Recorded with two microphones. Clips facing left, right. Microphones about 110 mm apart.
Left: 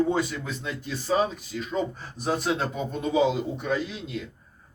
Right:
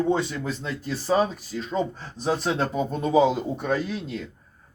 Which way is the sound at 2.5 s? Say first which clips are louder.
Right 4 dB; 40° right (ahead or behind).